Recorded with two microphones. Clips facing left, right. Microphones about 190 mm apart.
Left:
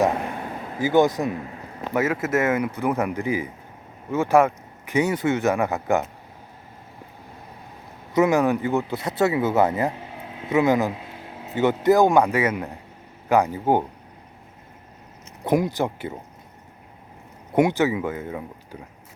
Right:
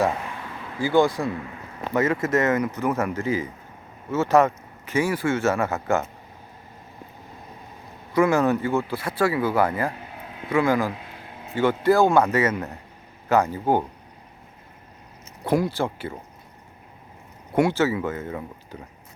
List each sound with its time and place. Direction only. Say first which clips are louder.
0.2 s a sound: left 5 dB; 45° left (ahead or behind)
0.8 s speech: left 1 dB; 20° left (ahead or behind)
1.9 s speech: right 1 dB; 5° left (ahead or behind)
8.1 s speech: left 1 dB; 20° left (ahead or behind)
15.4 s speech: left 1 dB; 20° left (ahead or behind)
17.5 s speech: left 1 dB; 20° left (ahead or behind)